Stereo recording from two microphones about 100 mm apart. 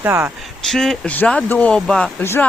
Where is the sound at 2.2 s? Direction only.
25° left (ahead or behind).